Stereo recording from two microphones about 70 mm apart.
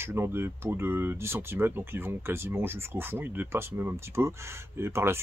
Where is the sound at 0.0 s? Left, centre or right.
Right.